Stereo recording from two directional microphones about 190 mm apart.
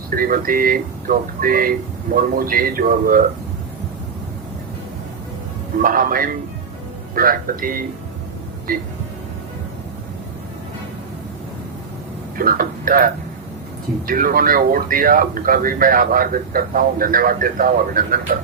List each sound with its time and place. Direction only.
0.2 s speech: 50° right (ahead or behind)
5.8 s speech: 45° right (ahead or behind)
12.4 s speech: 50° right (ahead or behind)
14.1 s speech: 45° right (ahead or behind)